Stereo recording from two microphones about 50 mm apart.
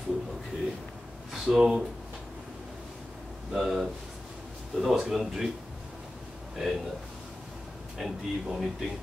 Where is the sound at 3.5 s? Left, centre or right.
Centre.